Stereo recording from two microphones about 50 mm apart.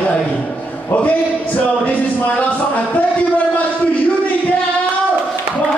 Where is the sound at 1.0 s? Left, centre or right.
Left.